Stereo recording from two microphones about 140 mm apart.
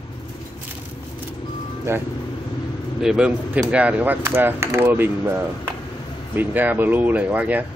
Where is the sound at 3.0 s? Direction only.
5° right (ahead or behind).